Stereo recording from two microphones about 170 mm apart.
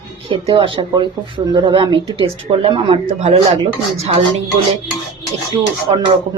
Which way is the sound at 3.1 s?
40° right (ahead or behind).